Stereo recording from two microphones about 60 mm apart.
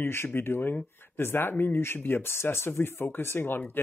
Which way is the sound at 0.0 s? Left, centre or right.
Left.